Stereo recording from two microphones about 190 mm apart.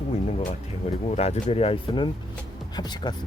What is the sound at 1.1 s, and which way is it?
Speech, 35° left (ahead or behind).